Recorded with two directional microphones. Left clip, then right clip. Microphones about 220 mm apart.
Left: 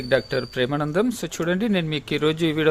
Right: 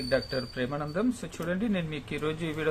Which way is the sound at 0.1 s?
50° left (ahead or behind).